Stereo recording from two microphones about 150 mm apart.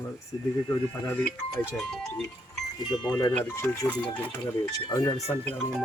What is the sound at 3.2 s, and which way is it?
Speech, 15° left (ahead or behind).